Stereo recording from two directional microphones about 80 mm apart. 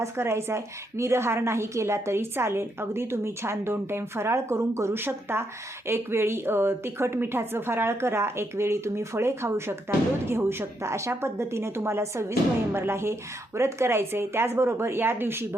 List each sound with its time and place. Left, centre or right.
0.0 s a woman's voice: right